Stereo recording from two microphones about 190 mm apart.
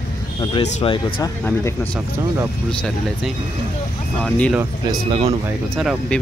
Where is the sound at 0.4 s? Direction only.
25° left (ahead or behind).